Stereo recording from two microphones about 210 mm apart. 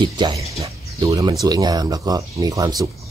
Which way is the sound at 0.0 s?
20° right (ahead or behind).